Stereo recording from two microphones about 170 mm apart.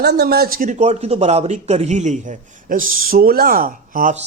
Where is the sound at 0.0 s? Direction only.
70° right (ahead or behind).